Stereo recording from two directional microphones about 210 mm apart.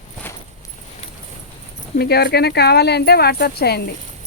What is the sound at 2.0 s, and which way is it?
Speech, 50° left (ahead or behind).